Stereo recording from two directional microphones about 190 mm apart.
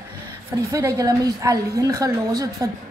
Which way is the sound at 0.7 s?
15° right (ahead or behind).